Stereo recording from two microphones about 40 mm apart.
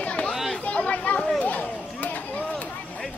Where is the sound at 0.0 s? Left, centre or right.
Left.